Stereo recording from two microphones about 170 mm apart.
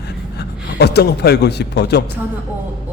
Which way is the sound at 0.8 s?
70° left (ahead or behind).